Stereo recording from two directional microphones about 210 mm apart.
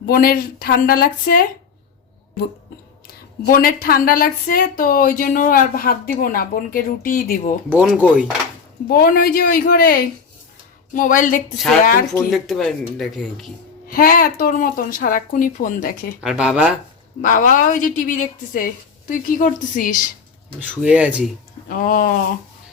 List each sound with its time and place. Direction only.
0.0 s speech: 45° left (ahead or behind)
3.4 s speech: 45° left (ahead or behind)
7.7 s speech: 5° right (ahead or behind)
8.9 s a woman's voice: 45° left (ahead or behind)
12.3 s speech: centre (ahead or behind)
13.8 s speech: 45° left (ahead or behind)
16.2 s speech: 5° right (ahead or behind)
17.2 s a woman's voice: 40° left (ahead or behind)
20.6 s speech: 5° right (ahead or behind)
21.7 s a woman's voice: 40° left (ahead or behind)